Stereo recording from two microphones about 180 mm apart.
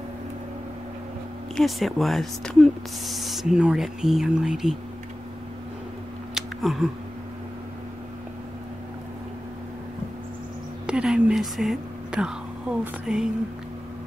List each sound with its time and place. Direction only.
1.6 s speech: centre (ahead or behind)
6.3 s a sound: centre (ahead or behind)
10.9 s speech: 5° right (ahead or behind)